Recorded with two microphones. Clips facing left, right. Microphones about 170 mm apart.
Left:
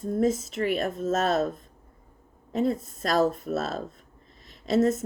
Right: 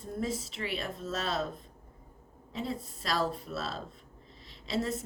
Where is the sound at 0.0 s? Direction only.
45° left (ahead or behind).